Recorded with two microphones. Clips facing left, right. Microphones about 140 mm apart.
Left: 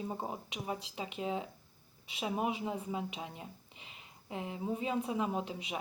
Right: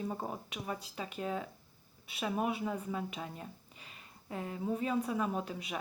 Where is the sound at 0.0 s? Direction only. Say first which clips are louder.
Right 1 dB; 15° left (ahead or behind).